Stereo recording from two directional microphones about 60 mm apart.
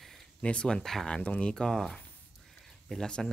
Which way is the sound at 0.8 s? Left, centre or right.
Centre.